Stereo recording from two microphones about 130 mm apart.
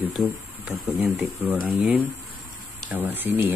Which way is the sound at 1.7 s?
15° right (ahead or behind).